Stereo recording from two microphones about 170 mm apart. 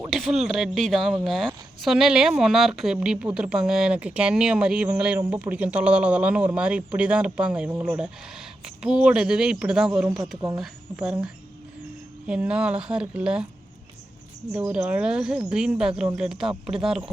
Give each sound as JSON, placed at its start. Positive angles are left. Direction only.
{"t": 0.1, "sound": "speech", "side_deg": 0}
{"t": 7.7, "sound": "speech", "side_deg": -15}
{"t": 7.9, "sound": "speech", "side_deg": -5}
{"t": 14.7, "sound": "speech", "side_deg": -5}